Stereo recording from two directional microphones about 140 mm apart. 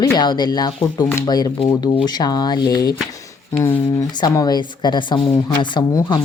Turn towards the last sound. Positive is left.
turn(degrees=30)  # may be behind; listen again after turning